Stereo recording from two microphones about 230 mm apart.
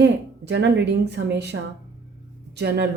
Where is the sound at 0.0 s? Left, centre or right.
Right.